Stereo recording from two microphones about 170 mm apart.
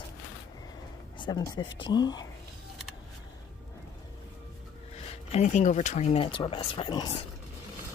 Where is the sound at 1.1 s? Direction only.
25° left (ahead or behind).